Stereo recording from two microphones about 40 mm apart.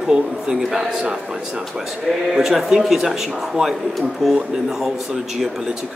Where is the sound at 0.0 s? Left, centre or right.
Centre.